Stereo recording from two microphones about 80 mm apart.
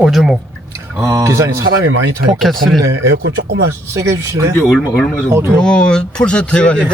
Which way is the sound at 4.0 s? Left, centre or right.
Right.